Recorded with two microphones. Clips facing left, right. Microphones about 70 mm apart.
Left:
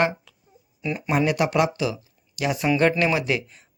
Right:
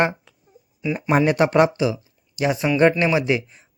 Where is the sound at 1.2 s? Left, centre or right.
Right.